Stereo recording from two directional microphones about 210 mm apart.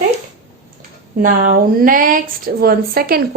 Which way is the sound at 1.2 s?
40° right (ahead or behind).